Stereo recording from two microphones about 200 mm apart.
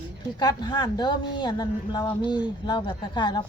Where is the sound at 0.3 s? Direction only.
20° left (ahead or behind).